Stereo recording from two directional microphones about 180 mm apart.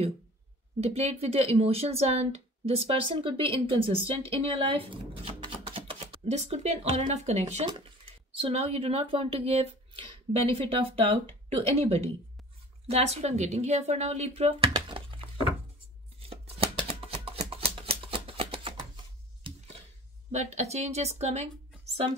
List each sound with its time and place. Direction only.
0.7 s speech: 35° right (ahead or behind)
16.2 s a sound: 30° right (ahead or behind)
20.2 s speech: 40° right (ahead or behind)